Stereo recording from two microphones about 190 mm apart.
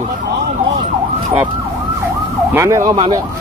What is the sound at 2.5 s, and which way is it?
Speech, 15° right (ahead or behind).